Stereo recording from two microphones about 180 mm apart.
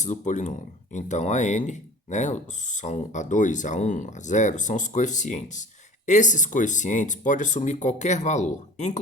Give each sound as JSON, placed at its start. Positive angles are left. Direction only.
{"t": 0.0, "sound": "speech", "side_deg": 40}